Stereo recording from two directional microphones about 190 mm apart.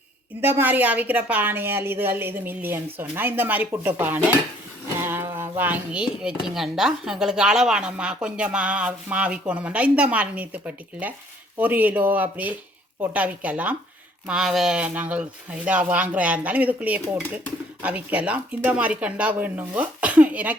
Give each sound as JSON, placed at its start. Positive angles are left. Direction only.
{"t": 0.4, "sound": "speech", "side_deg": -10}